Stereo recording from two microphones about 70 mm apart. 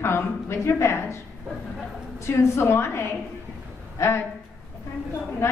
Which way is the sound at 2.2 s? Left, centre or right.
Left.